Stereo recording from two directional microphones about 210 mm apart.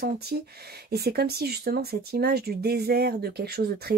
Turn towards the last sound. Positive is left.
turn(degrees=-50)  # may be behind; listen again after turning